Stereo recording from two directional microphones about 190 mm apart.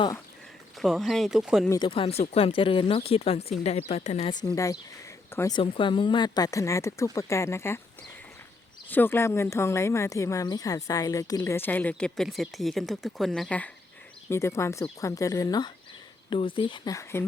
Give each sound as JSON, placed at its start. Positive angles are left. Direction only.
{"t": 0.8, "sound": "speech", "side_deg": 0}
{"t": 1.7, "sound": "speech", "side_deg": 25}
{"t": 4.3, "sound": "a woman's voice", "side_deg": 20}
{"t": 5.5, "sound": "a woman's voice", "side_deg": 25}
{"t": 8.9, "sound": "a woman's voice", "side_deg": 10}